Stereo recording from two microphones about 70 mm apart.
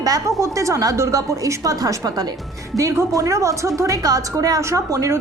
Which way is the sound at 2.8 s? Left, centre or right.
Right.